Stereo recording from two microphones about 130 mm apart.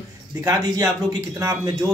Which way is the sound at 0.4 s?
25° right (ahead or behind).